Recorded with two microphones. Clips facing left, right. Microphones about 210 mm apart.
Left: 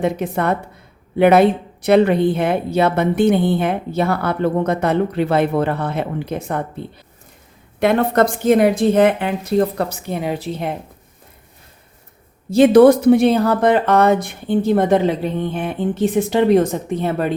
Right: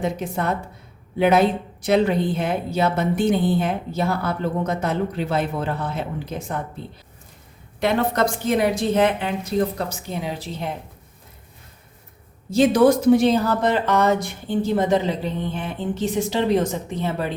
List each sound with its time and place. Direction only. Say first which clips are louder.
0.0 s a woman's voice: left 5 dB; 60° left (ahead or behind)
12.5 s a woman's voice: left 6 dB; 60° left (ahead or behind)